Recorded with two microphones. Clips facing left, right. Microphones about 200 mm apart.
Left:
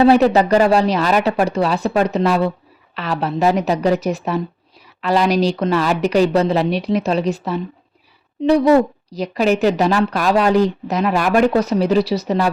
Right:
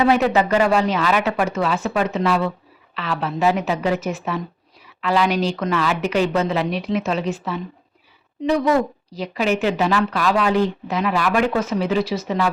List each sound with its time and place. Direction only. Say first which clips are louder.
0.0 s a woman's voice: left 5 dB; 35° left (ahead or behind)